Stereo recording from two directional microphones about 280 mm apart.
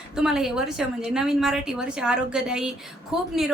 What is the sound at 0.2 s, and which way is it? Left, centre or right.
A woman's voice, centre.